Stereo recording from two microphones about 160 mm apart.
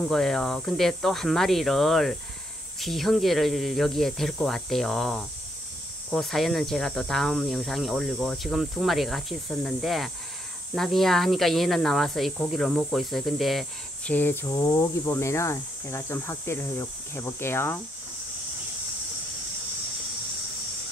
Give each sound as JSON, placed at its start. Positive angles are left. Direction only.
{"t": 0.0, "sound": "speech", "side_deg": 0}
{"t": 14.1, "sound": "speech", "side_deg": 15}